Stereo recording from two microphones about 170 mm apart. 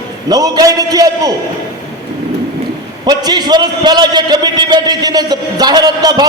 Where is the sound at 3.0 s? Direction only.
25° right (ahead or behind).